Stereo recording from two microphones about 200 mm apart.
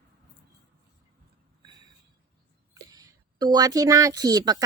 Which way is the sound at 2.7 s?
20° right (ahead or behind).